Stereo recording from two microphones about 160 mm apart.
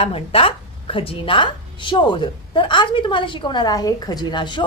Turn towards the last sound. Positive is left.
turn(degrees=30)  # may be behind; listen again after turning